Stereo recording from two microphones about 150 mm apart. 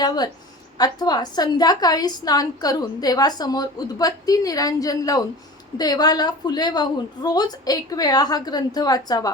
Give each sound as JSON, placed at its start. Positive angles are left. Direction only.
{"t": 0.8, "sound": "a woman's voice", "side_deg": 25}